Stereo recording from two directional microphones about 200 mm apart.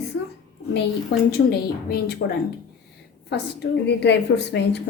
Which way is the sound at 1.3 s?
50° left (ahead or behind).